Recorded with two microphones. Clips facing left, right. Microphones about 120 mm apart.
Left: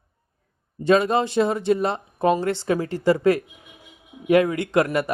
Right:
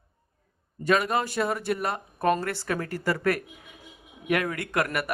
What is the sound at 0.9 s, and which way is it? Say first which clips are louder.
Speech: left 6 dB; 25° left (ahead or behind).